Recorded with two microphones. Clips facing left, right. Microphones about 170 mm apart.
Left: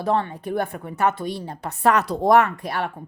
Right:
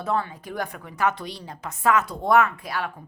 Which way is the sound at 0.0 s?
30° left (ahead or behind).